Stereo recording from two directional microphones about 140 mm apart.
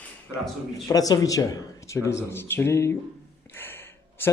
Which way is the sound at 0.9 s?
25° left (ahead or behind).